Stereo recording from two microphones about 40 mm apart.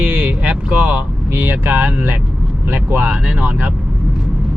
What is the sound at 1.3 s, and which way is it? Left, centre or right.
Speech, right.